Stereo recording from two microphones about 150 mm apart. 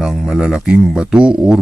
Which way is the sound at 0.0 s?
5° right (ahead or behind).